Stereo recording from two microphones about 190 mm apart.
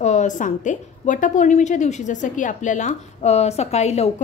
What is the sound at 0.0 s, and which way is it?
A woman's voice, 40° left (ahead or behind).